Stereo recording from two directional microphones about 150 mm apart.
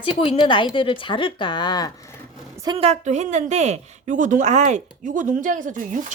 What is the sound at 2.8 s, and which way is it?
A woman's voice, 50° right (ahead or behind).